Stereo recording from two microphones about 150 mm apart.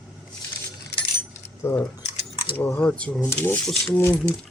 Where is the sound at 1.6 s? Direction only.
15° left (ahead or behind).